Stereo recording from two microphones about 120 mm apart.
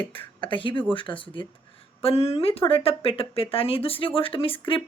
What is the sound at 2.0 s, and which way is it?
Speech, 55° left (ahead or behind).